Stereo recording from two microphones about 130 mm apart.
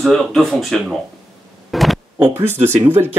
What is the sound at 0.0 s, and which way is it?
Speech, centre (ahead or behind).